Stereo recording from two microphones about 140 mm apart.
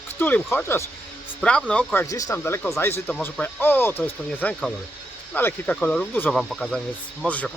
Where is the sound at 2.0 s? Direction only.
25° left (ahead or behind).